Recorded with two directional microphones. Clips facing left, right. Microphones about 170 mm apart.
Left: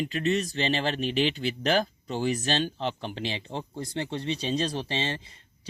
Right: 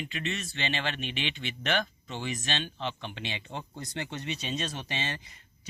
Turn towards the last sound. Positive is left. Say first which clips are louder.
# left 5 dB
turn(degrees=30)  # may be behind; listen again after turning